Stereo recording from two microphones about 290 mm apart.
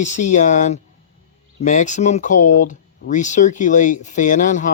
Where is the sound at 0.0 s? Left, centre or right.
Left.